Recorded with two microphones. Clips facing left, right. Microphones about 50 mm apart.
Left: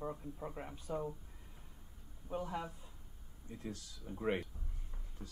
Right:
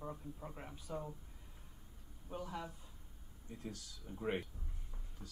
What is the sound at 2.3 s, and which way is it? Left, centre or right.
Speech, left.